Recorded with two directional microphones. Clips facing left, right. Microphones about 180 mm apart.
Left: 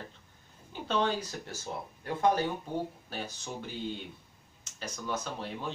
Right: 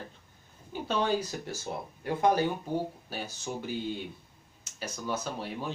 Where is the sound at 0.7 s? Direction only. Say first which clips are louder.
Right 2 dB; 10° right (ahead or behind).